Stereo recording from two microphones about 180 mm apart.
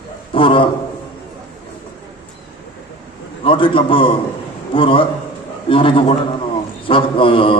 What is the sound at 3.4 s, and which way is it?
A man's voice, 30° left (ahead or behind).